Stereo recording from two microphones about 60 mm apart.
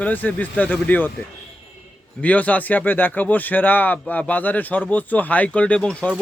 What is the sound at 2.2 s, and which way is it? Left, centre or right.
A man's voice, left.